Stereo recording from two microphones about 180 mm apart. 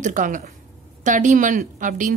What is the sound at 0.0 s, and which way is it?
A woman's voice, 45° right (ahead or behind).